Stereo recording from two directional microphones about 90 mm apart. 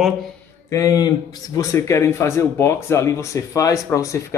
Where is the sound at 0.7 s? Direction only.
45° left (ahead or behind).